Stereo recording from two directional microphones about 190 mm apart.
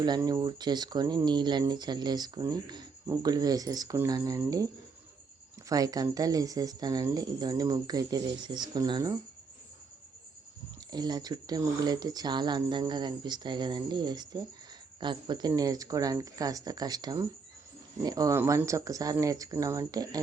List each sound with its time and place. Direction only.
0.0 s speech: 20° right (ahead or behind)
10.9 s speech: 20° right (ahead or behind)